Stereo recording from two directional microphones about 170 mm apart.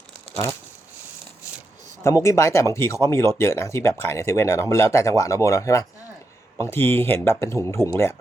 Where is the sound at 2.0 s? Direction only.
15° left (ahead or behind).